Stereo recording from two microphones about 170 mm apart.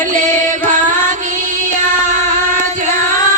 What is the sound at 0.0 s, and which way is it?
Music, 50° right (ahead or behind).